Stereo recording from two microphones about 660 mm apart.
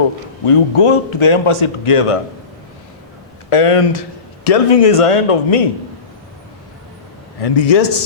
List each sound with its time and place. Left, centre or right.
0.4 s a man's voice: left
3.5 s a man's voice: left
7.4 s a man's voice: left